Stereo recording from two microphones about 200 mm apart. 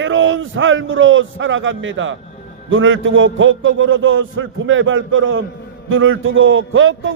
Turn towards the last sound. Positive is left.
turn(degrees=-75)  # may be behind; listen again after turning